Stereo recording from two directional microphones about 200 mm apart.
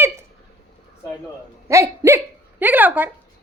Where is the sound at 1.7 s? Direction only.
15° right (ahead or behind).